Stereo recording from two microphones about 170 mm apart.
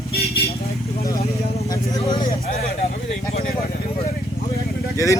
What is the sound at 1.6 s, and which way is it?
Vehicle, 25° left (ahead or behind).